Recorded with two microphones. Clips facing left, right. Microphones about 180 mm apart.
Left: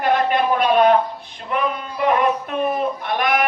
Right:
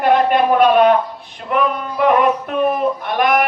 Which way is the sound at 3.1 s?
55° right (ahead or behind).